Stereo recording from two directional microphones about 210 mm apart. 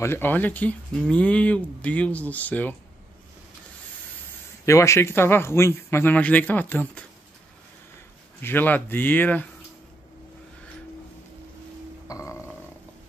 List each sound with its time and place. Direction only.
0.0 s speech: 10° left (ahead or behind)
4.6 s speech: 15° left (ahead or behind)
8.4 s speech: 10° left (ahead or behind)